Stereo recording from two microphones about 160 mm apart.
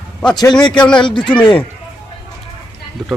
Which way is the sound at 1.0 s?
30° left (ahead or behind).